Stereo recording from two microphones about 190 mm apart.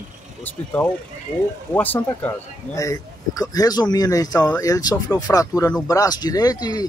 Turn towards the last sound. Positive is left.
turn(degrees=20)  # may be behind; listen again after turning